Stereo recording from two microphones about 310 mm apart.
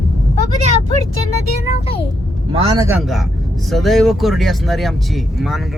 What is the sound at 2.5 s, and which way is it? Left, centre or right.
Speech, centre.